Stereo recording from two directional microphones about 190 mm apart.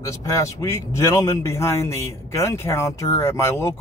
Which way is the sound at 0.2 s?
15° left (ahead or behind).